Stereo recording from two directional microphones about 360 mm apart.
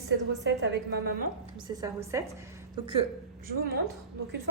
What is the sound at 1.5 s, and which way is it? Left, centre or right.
Speech, centre.